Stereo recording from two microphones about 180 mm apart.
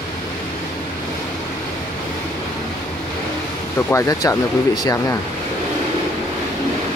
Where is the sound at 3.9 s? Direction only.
15° left (ahead or behind).